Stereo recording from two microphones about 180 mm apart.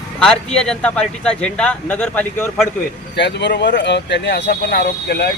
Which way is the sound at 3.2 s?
75° left (ahead or behind).